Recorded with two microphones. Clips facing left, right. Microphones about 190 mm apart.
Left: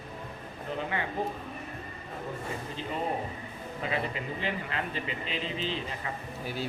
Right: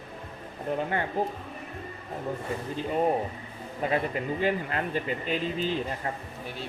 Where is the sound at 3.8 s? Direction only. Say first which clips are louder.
Right 5 dB; 50° right (ahead or behind).